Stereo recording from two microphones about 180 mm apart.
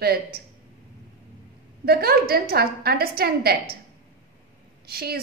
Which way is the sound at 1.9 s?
60° right (ahead or behind).